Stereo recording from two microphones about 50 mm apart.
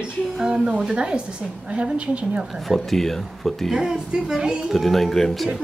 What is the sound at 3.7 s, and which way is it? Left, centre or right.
Speech, centre.